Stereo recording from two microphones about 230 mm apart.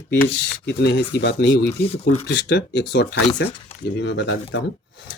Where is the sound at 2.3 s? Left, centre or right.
Left.